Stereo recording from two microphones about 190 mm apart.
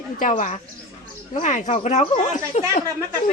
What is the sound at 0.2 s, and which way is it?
A woman's voice, 45° left (ahead or behind).